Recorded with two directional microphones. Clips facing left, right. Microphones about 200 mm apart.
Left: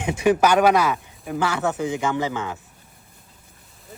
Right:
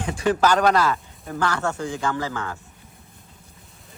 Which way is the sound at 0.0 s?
10° left (ahead or behind).